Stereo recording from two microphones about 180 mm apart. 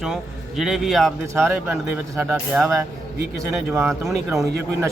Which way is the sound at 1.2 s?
15° right (ahead or behind).